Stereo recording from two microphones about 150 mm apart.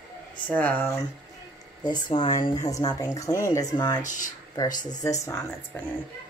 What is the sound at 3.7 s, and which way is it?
Speech, 30° left (ahead or behind).